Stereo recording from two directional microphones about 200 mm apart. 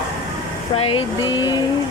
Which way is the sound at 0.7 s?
25° left (ahead or behind).